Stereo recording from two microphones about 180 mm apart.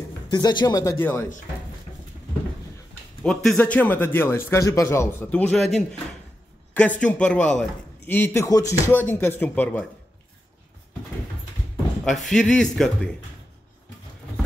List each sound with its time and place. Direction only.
0.3 s speech: 25° left (ahead or behind)
3.3 s speech: 5° left (ahead or behind)
7.0 s speech: 5° left (ahead or behind)
12.0 s speech: centre (ahead or behind)